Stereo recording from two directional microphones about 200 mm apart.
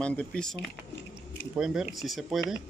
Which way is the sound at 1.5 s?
5° right (ahead or behind).